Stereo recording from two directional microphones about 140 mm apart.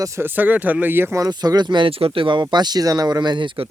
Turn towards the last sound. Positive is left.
turn(degrees=-35)  # may be behind; listen again after turning